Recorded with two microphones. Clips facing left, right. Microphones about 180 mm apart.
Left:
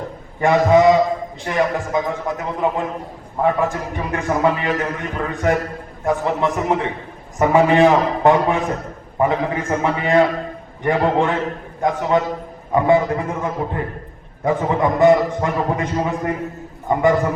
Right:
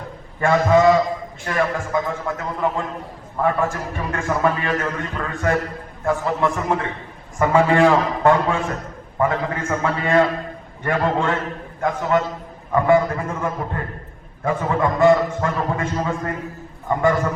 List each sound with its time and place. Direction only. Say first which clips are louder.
0.3 s a man's voice: left 2 dB; 20° left (ahead or behind)